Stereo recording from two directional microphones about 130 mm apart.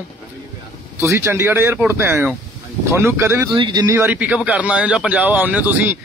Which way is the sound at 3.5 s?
35° right (ahead or behind).